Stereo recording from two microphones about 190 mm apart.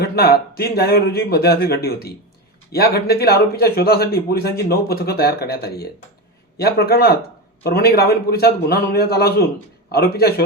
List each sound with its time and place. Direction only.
0.0 s speech: 55° left (ahead or behind)